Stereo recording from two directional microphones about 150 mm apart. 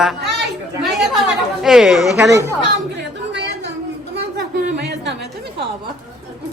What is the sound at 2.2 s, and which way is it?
Speech, 20° right (ahead or behind).